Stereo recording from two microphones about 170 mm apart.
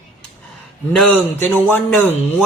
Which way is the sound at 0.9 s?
10° left (ahead or behind).